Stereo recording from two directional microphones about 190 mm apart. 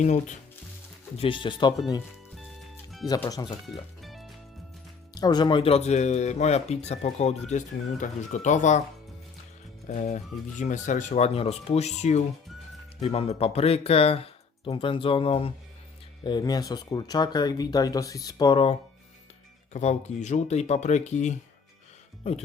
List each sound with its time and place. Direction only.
0.0 s speech: 40° left (ahead or behind)
1.1 s speech: 30° left (ahead or behind)
3.1 s speech: 20° left (ahead or behind)
3.7 s music: centre (ahead or behind)
5.1 s speech: 20° left (ahead or behind); by 8.8 s 40° left (ahead or behind)
9.8 s speech: 40° left (ahead or behind)